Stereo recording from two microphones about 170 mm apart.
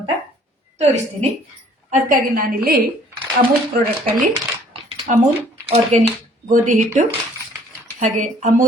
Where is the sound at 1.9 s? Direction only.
55° right (ahead or behind).